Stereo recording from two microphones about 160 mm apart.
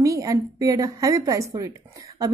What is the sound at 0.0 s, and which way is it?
A woman's voice, 20° right (ahead or behind).